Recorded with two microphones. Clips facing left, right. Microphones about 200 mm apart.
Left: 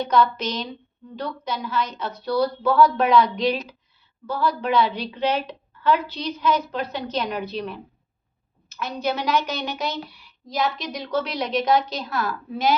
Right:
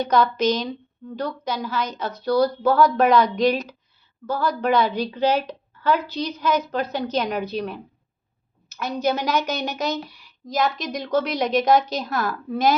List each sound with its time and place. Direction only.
0.1 s a woman's voice: 40° right (ahead or behind)